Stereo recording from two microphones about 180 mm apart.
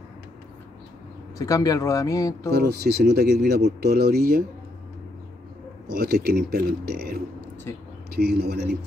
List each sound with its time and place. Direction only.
1.4 s speech: 20° left (ahead or behind)
2.5 s speech: 65° right (ahead or behind)
5.9 s speech: 60° right (ahead or behind)
7.7 s speech: 15° left (ahead or behind)
8.2 s speech: 65° right (ahead or behind)